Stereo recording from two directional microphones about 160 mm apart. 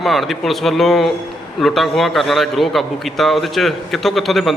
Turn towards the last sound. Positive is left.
turn(degrees=0)  # may be behind; listen again after turning